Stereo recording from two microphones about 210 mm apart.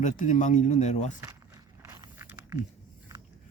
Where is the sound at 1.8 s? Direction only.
15° right (ahead or behind).